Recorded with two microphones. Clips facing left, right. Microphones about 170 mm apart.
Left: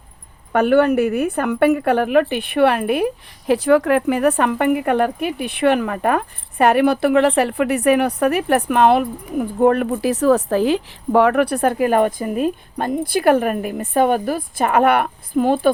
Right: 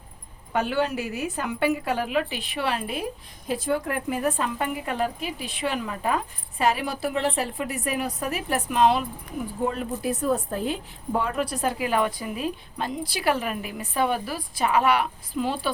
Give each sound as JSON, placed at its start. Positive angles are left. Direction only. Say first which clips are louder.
{"t": 0.5, "sound": "a woman's voice", "louder": "left 11 dB", "side_deg": 55}